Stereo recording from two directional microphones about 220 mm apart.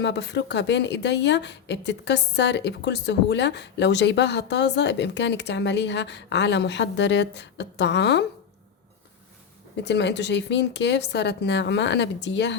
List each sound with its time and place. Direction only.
0.0 s speech: 50° left (ahead or behind)
9.7 s speech: 50° left (ahead or behind)